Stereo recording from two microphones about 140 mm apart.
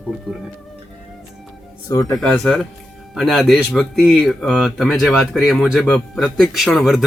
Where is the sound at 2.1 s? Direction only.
5° left (ahead or behind).